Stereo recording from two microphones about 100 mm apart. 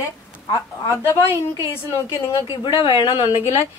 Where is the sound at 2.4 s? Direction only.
60° left (ahead or behind).